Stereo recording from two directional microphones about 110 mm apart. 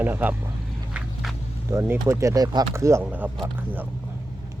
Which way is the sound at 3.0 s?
15° right (ahead or behind).